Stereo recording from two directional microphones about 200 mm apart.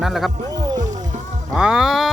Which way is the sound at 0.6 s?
20° right (ahead or behind).